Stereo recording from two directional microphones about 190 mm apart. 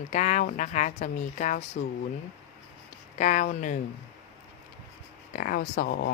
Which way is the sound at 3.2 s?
40° left (ahead or behind).